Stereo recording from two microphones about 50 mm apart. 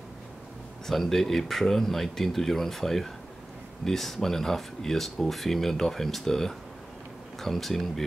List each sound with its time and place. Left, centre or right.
0.8 s speech: centre